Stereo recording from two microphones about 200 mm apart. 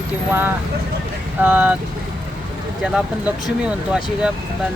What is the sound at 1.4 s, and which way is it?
Speech, 5° right (ahead or behind).